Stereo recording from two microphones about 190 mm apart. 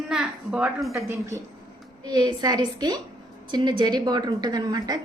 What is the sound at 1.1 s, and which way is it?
A woman's voice, 15° right (ahead or behind).